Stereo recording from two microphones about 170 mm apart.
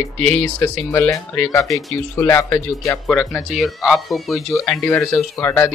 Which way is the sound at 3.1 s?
Centre (ahead or behind).